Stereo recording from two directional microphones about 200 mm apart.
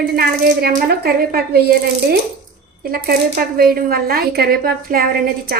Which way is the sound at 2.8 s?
50° right (ahead or behind).